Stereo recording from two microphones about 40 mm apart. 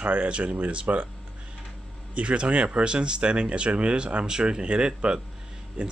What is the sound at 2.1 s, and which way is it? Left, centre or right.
Speech, right.